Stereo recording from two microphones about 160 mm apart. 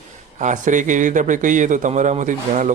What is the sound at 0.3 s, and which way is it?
A man's voice, 50° right (ahead or behind).